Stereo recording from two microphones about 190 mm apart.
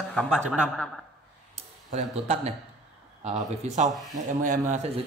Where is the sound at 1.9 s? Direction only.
35° right (ahead or behind).